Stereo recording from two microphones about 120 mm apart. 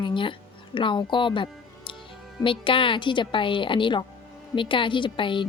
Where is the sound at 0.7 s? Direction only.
45° left (ahead or behind).